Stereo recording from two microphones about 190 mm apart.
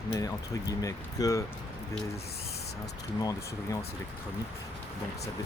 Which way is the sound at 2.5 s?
60° left (ahead or behind).